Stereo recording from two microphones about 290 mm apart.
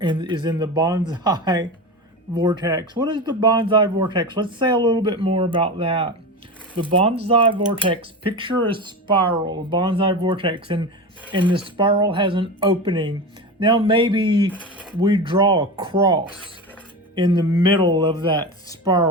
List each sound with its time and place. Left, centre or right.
0.0 s speech: centre
14.5 s speech: centre
15.0 s speech: centre